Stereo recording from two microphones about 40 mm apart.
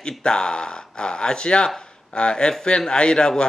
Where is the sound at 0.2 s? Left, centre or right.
Left.